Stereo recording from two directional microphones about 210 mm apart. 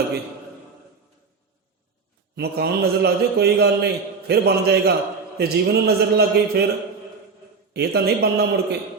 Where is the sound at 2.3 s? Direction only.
50° right (ahead or behind).